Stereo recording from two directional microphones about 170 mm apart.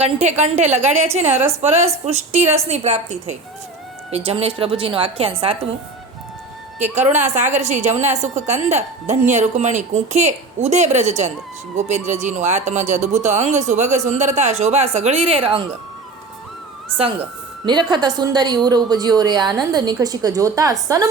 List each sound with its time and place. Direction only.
0.0 s a woman's voice: 40° right (ahead or behind)
6.9 s a woman's voice: 40° right (ahead or behind)
17.9 s a woman's voice: 25° right (ahead or behind)